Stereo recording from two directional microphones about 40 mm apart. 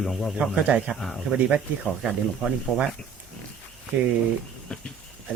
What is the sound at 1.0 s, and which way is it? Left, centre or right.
Speech, centre.